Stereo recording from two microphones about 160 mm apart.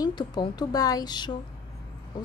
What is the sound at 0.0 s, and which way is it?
A woman's voice, 25° left (ahead or behind).